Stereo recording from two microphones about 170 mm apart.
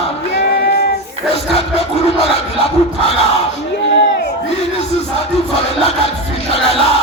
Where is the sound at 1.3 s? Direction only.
35° left (ahead or behind).